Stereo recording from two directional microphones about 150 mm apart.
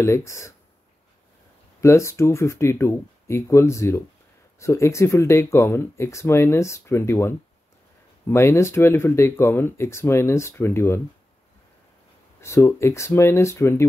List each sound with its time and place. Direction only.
0.0 s speech: 20° left (ahead or behind)
1.8 s speech: 20° left (ahead or behind)
12.4 s speech: 20° left (ahead or behind)